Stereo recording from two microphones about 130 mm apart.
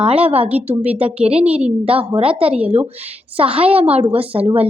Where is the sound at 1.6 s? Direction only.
45° right (ahead or behind).